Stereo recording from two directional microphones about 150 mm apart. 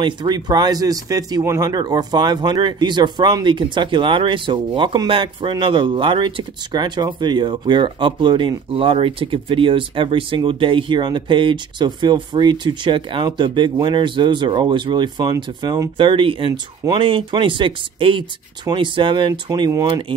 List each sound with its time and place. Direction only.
0.0 s speech: 30° right (ahead or behind)